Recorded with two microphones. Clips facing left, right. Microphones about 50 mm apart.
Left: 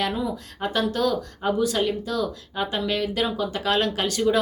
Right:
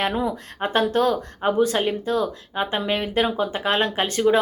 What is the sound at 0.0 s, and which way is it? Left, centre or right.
Speech, right.